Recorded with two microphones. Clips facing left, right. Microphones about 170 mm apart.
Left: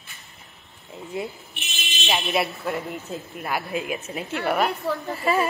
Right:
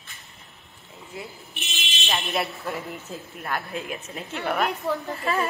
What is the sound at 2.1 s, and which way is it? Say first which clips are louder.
A woman's voice: left 3 dB; 5° left (ahead or behind).